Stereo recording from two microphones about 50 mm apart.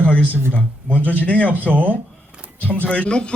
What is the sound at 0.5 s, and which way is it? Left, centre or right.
A man's voice, left.